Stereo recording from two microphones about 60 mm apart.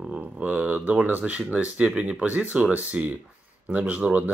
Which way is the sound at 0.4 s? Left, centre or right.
Right.